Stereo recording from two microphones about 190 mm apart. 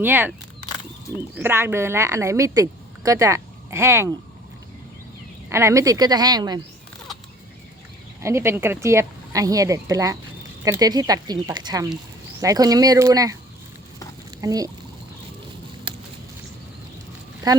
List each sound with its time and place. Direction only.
0.0 s a woman's voice: 10° right (ahead or behind)
1.4 s a woman's voice: 10° right (ahead or behind)
5.5 s speech: 15° right (ahead or behind)
8.2 s a woman's voice: 15° right (ahead or behind)
14.3 s a sound: 20° right (ahead or behind)
17.5 s speech: 20° right (ahead or behind)